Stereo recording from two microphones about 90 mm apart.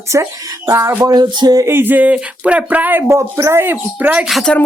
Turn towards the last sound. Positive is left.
turn(degrees=10)  # may be behind; listen again after turning